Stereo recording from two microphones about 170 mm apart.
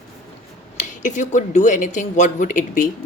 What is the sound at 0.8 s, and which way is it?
A woman's voice, 45° left (ahead or behind).